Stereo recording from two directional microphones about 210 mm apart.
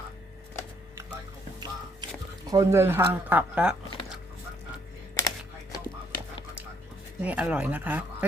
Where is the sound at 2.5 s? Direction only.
15° right (ahead or behind).